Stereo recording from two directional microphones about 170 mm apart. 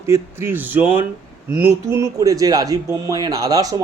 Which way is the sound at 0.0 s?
15° right (ahead or behind).